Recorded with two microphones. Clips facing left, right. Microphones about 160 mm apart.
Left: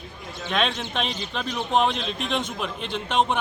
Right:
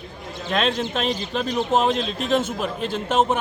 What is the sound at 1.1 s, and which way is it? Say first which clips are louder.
Speech: right 5 dB; 50° right (ahead or behind).